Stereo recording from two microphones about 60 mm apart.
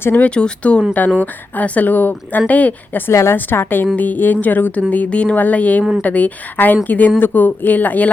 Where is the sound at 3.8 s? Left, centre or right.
Left.